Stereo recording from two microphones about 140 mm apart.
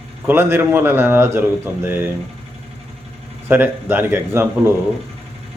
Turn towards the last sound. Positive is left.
turn(degrees=-15)  # may be behind; listen again after turning